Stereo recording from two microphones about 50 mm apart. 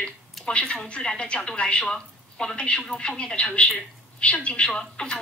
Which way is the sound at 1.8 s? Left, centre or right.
Centre.